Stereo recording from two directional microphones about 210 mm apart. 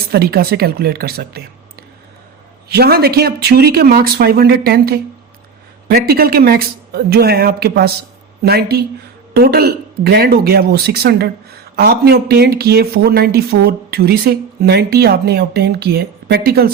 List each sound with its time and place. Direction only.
0.1 s speech: 45° right (ahead or behind)
2.6 s speech: 50° right (ahead or behind)